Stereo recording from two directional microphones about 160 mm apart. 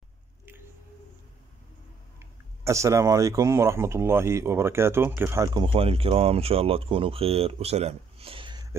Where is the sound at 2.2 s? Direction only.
20° right (ahead or behind).